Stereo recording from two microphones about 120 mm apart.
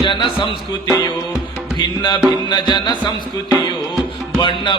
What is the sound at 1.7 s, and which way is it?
Music, 40° left (ahead or behind).